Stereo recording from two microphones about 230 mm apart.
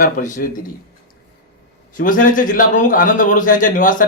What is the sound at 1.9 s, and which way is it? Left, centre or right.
A man's voice, left.